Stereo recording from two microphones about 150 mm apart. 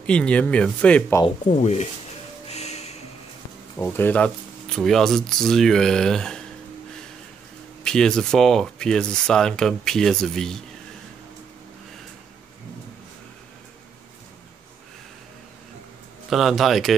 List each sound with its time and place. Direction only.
0.0 s speech: 5° left (ahead or behind)
1.5 s speech: 50° left (ahead or behind)
2.4 s music: 45° left (ahead or behind)
3.7 s speech: 15° left (ahead or behind)
7.8 s speech: 5° left (ahead or behind)
16.3 s speech: centre (ahead or behind)